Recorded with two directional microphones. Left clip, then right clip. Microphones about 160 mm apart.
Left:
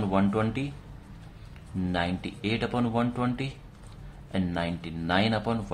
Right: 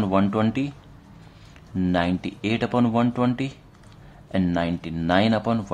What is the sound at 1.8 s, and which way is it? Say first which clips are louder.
A man's voice: right 6 dB; 30° right (ahead or behind).